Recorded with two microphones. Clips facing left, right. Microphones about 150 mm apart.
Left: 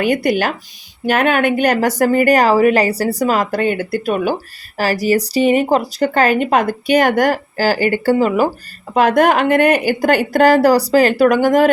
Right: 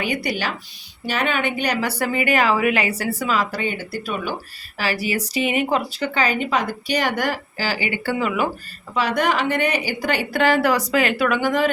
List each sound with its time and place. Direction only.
0.0 s a woman's voice: 50° left (ahead or behind)
4.8 s a woman's voice: 40° left (ahead or behind)
9.0 s a woman's voice: 50° left (ahead or behind)